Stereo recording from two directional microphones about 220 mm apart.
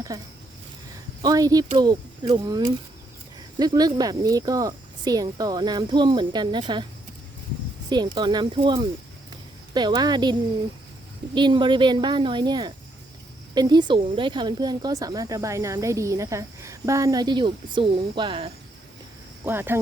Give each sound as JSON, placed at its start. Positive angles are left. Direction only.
{"t": 0.1, "sound": "speech", "side_deg": -15}
{"t": 7.9, "sound": "speech", "side_deg": -20}
{"t": 11.3, "sound": "speech", "side_deg": -20}
{"t": 19.5, "sound": "speech", "side_deg": -10}